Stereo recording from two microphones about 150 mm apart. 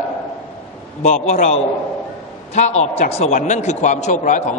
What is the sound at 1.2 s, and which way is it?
A man's voice, 50° left (ahead or behind).